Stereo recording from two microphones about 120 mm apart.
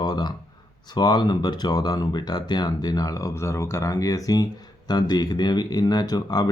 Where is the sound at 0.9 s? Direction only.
35° left (ahead or behind).